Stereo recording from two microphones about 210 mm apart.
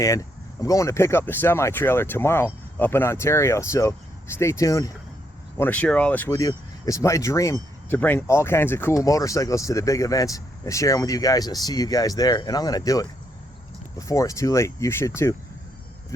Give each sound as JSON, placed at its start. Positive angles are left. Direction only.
{"t": 0.0, "sound": "speech", "side_deg": 15}
{"t": 14.1, "sound": "speech", "side_deg": 15}